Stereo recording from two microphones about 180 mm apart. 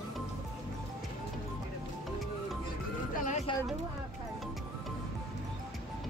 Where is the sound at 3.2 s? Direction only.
40° left (ahead or behind).